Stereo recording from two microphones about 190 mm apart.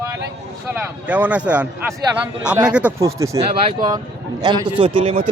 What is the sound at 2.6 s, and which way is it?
Speech, 5° right (ahead or behind).